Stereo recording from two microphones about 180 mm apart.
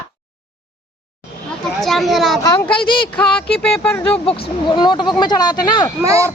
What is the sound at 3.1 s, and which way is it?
A woman's voice, 5° left (ahead or behind).